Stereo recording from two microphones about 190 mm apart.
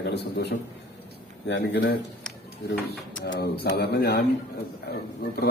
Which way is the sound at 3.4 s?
55° left (ahead or behind).